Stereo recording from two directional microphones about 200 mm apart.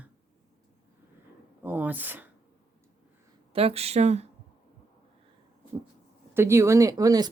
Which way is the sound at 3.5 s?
30° right (ahead or behind).